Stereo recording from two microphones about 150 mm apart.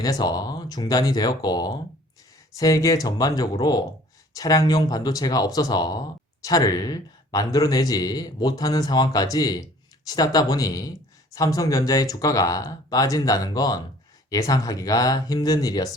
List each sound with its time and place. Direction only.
0.0 s a man's voice: 25° left (ahead or behind)